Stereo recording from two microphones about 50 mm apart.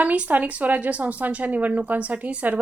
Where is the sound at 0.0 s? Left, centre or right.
Right.